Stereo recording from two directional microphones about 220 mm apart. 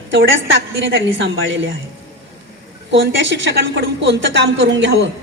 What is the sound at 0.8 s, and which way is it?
Speech, 55° right (ahead or behind).